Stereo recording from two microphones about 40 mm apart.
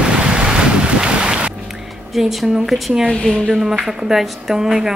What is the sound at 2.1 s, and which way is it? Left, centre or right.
A woman's voice, centre.